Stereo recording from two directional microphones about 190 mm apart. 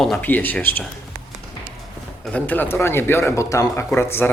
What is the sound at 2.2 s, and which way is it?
Speech, 10° left (ahead or behind).